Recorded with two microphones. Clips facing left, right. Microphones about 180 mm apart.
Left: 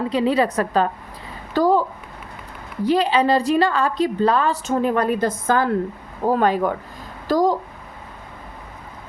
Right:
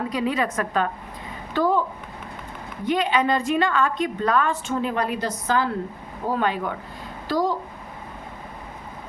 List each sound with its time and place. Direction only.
0.1 s a woman's voice: 30° left (ahead or behind)
2.8 s a woman's voice: 35° left (ahead or behind)
4.7 s a woman's voice: 45° left (ahead or behind)